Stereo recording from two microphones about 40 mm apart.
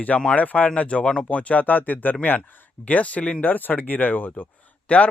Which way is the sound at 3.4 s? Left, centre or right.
Left.